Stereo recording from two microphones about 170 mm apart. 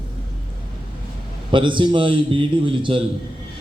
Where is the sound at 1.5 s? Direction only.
30° right (ahead or behind).